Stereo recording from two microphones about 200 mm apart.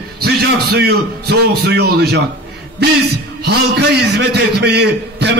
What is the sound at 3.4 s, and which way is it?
A man's voice, 55° right (ahead or behind).